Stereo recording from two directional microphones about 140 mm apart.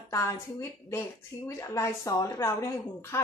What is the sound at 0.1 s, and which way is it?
A woman's voice, 20° left (ahead or behind).